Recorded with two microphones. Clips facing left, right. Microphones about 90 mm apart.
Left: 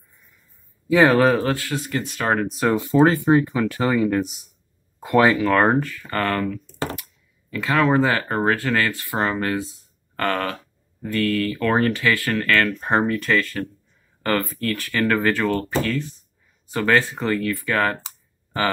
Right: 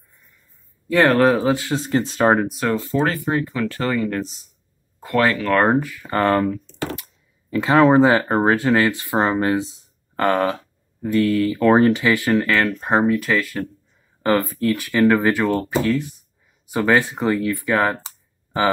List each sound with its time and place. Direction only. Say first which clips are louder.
0.8 s speech: even; centre (ahead or behind)
1.5 s speech: right 5 dB; 25° right (ahead or behind)
2.4 s speech: left 1 dB; centre (ahead or behind)
2.7 s speech: left 6 dB; 15° left (ahead or behind)
5.5 s speech: right 1 dB; centre (ahead or behind)